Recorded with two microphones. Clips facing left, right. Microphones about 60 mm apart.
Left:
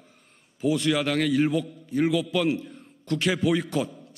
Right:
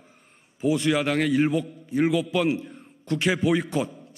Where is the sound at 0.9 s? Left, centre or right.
Centre.